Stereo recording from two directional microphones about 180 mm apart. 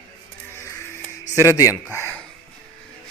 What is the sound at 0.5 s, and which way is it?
Music, 15° left (ahead or behind).